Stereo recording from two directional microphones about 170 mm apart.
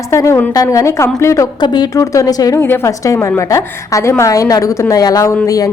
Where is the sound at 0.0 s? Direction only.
20° left (ahead or behind).